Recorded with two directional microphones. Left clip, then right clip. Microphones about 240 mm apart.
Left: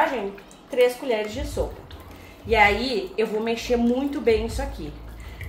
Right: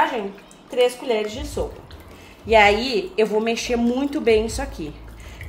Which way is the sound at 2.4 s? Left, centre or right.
Right.